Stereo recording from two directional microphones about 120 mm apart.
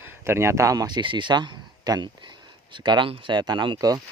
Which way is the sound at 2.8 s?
40° right (ahead or behind).